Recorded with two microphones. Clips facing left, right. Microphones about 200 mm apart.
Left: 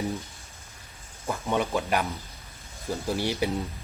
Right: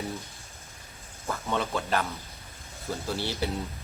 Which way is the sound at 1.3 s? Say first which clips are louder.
Left 3 dB; 15° left (ahead or behind).